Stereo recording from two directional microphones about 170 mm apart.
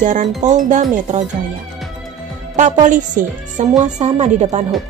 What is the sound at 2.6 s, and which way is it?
Speech, 45° right (ahead or behind).